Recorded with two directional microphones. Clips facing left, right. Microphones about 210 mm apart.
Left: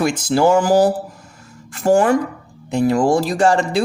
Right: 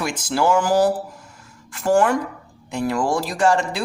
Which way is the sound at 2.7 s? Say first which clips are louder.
Left 6 dB; 20° left (ahead or behind).